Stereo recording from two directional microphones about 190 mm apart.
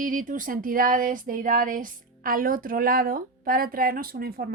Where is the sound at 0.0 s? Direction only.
45° right (ahead or behind).